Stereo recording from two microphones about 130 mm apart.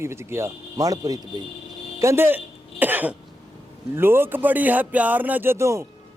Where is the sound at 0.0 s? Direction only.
20° right (ahead or behind).